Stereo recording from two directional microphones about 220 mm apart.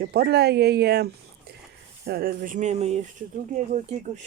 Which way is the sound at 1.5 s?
45° right (ahead or behind).